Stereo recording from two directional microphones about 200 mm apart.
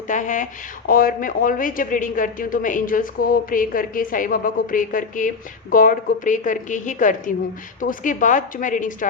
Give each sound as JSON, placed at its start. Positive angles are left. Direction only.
{"t": 0.1, "sound": "a woman's voice", "side_deg": 40}